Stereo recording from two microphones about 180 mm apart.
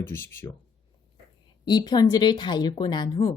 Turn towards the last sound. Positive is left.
turn(degrees=25)  # may be behind; listen again after turning